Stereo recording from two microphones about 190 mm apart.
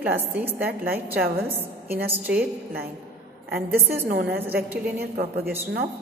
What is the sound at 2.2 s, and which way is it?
Speech, 5° right (ahead or behind).